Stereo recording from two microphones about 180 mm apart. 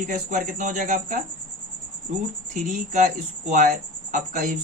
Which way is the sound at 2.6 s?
40° right (ahead or behind).